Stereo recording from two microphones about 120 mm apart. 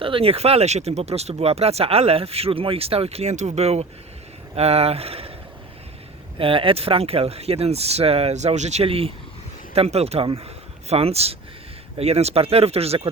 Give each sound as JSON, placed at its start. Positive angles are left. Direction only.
{"t": 0.0, "sound": "speech", "side_deg": -50}
{"t": 6.4, "sound": "speech", "side_deg": -45}